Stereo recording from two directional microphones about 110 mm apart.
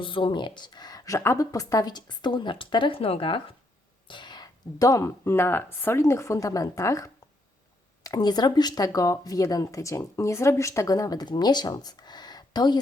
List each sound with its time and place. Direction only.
0.0 s speech: 50° left (ahead or behind)
4.1 s speech: 40° left (ahead or behind)